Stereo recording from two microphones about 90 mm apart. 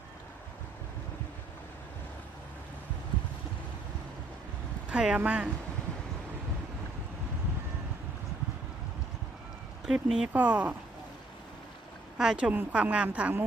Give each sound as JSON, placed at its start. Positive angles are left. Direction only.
{"t": 4.9, "sound": "speech", "side_deg": -10}
{"t": 9.8, "sound": "speech", "side_deg": -5}
{"t": 12.1, "sound": "speech", "side_deg": -5}